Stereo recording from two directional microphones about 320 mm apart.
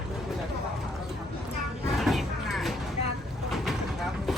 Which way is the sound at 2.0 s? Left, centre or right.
Centre.